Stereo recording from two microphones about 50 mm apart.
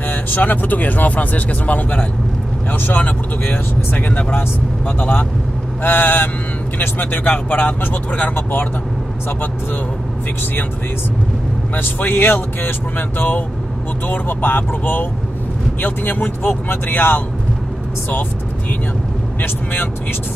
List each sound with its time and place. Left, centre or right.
0.1 s speech: left
11.7 s speech: left
19.4 s speech: left